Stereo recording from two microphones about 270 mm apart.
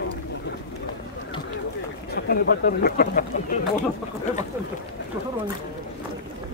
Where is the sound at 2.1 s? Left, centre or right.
Left.